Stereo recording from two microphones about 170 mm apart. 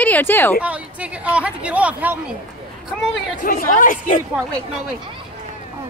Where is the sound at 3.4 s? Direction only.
55° left (ahead or behind).